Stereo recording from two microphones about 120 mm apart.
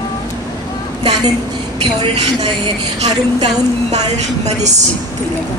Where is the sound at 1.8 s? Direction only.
45° right (ahead or behind).